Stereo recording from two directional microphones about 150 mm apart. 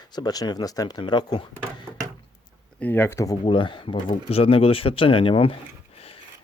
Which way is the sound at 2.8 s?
15° left (ahead or behind).